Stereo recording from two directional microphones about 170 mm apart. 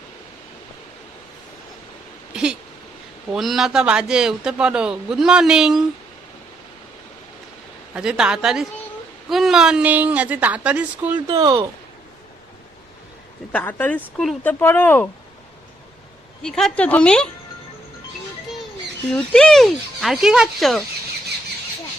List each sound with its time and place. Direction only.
2.3 s a sound: 5° right (ahead or behind)
3.3 s a man's voice: centre (ahead or behind)
7.9 s a man's voice: 5° right (ahead or behind)
11.3 s speech: 30° right (ahead or behind)
13.5 s speech: 10° left (ahead or behind)
16.4 s a man's voice: 5° left (ahead or behind)
19.1 s a man's voice: 5° left (ahead or behind)